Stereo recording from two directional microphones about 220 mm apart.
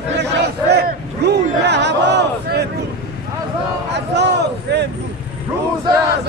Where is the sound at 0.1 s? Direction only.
50° right (ahead or behind).